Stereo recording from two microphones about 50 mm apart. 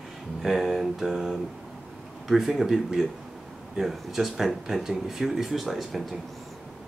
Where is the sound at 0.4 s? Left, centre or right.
Centre.